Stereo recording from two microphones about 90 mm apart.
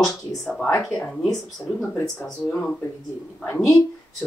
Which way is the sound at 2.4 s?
10° left (ahead or behind).